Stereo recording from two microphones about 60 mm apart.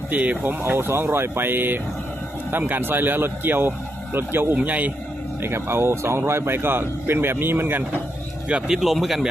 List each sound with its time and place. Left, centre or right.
0.1 s speech: right
0.6 s speech: right
4.5 s speech: right
5.4 s speech: right
8.4 s speech: right
8.7 s speech: centre